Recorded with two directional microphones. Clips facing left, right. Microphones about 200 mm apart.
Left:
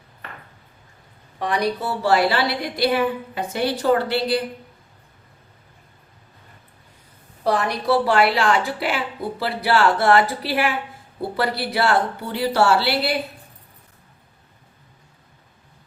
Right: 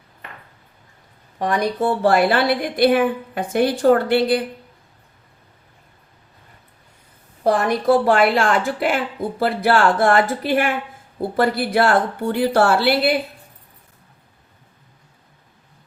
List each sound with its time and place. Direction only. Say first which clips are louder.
1.4 s a woman's voice: right 3 dB; 45° right (ahead or behind)
7.4 s a woman's voice: right 4 dB; 50° right (ahead or behind)